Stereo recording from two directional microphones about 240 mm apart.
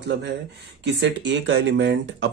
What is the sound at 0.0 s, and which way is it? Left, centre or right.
Speech, right.